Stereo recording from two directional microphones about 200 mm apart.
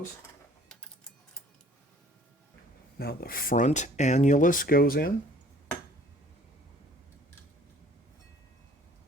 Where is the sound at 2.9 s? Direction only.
50° left (ahead or behind).